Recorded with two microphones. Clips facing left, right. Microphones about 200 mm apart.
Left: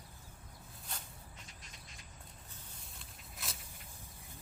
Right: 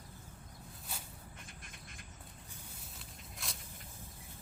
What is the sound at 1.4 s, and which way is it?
Duck, 55° right (ahead or behind).